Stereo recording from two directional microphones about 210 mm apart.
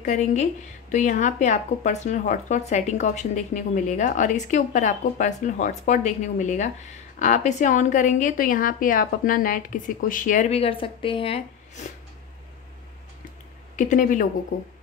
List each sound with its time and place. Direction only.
0.0 s speech: 35° left (ahead or behind)
13.7 s speech: 35° left (ahead or behind)